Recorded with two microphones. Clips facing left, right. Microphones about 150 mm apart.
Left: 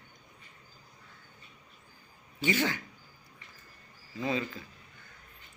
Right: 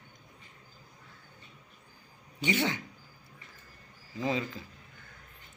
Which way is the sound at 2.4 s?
20° right (ahead or behind).